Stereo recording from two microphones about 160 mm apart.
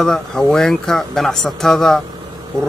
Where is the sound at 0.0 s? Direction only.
5° left (ahead or behind).